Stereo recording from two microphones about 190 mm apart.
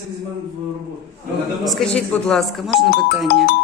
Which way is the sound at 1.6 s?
Centre (ahead or behind).